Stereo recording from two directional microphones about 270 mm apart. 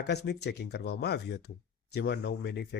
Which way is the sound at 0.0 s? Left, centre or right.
Left.